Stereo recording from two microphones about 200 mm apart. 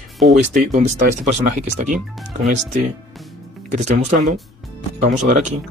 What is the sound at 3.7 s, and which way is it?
Speech, 35° right (ahead or behind).